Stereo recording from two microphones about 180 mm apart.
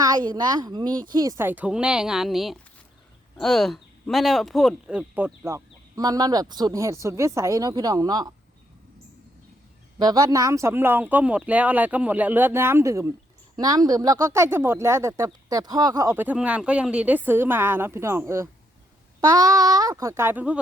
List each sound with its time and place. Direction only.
0.0 s a woman's voice: 20° right (ahead or behind)
10.0 s speech: 20° right (ahead or behind)